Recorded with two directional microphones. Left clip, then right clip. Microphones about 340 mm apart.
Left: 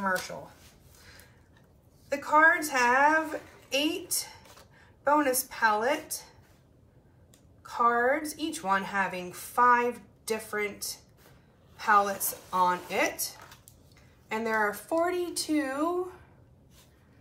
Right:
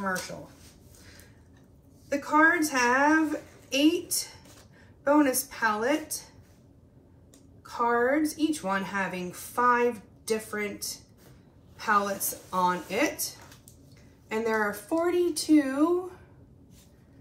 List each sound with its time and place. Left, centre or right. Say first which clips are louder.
2.0 s a woman's voice: left 1 dB; centre
7.6 s a woman's voice: left 1 dB; centre
11.7 s a woman's voice: left 2 dB; centre
14.3 s a woman's voice: right 1 dB; centre